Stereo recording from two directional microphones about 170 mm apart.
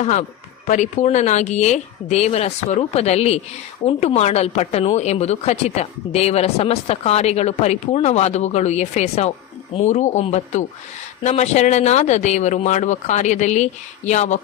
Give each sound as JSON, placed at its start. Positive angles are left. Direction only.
{"t": 0.7, "sound": "a woman's voice", "side_deg": 45}